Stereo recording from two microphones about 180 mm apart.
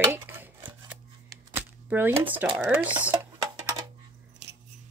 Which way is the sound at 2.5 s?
5° right (ahead or behind).